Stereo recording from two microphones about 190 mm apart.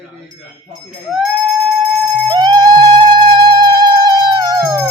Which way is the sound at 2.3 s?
25° right (ahead or behind).